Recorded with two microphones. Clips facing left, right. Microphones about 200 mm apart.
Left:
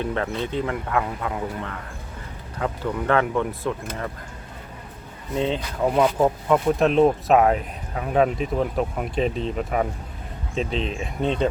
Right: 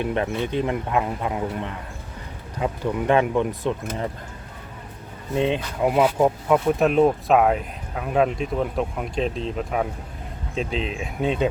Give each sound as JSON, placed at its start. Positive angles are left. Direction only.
{"t": 0.0, "sound": "speech", "side_deg": -15}
{"t": 5.3, "sound": "speech", "side_deg": -15}